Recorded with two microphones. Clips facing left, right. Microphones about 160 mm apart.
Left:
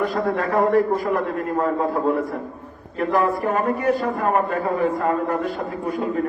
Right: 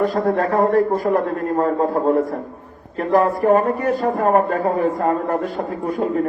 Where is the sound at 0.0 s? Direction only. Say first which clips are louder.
Right 4 dB; 40° right (ahead or behind).